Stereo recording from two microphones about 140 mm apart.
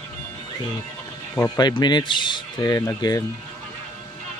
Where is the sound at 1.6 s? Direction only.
30° left (ahead or behind).